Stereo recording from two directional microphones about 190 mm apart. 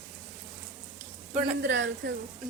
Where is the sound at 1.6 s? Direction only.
75° right (ahead or behind).